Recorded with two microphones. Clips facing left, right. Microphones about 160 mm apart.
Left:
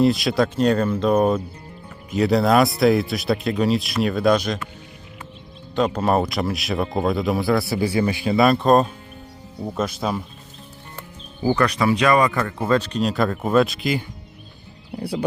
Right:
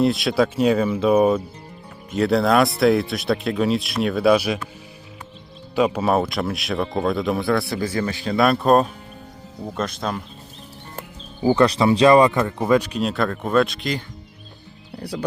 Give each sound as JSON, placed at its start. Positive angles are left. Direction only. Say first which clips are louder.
{"t": 0.0, "sound": "speech", "louder": "even", "side_deg": 0}
{"t": 5.7, "sound": "speech", "louder": "right 1 dB", "side_deg": -10}
{"t": 11.4, "sound": "speech", "louder": "right 3 dB", "side_deg": -25}
{"t": 12.4, "sound": "speech", "louder": "right 2 dB", "side_deg": -15}